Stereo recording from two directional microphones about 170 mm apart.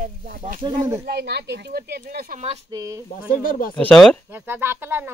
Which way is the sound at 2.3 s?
40° right (ahead or behind).